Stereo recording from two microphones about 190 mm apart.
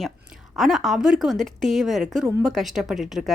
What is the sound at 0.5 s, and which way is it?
A woman's voice, centre (ahead or behind).